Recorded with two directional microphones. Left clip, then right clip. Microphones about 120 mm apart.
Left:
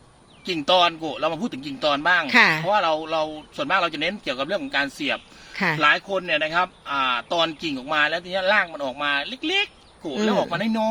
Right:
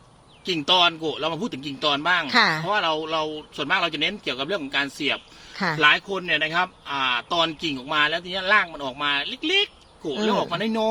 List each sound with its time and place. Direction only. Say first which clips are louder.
0.4 s a man's voice: even; 20° left (ahead or behind)
2.2 s speech: left 3 dB; 35° left (ahead or behind)
2.7 s a man's voice: left 2 dB; 20° left (ahead or behind)
5.5 s speech: left 2 dB; 35° left (ahead or behind)
5.8 s a man's voice: right 2 dB; 15° left (ahead or behind)